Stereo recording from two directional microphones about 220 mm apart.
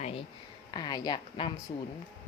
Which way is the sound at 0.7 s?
20° left (ahead or behind).